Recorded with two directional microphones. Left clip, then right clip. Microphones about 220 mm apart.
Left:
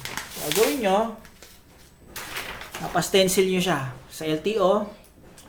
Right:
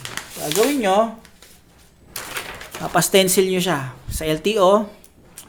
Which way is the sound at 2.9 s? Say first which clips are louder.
Right 4 dB; 35° right (ahead or behind).